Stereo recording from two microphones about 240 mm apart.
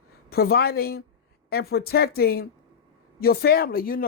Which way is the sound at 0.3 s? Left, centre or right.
Left.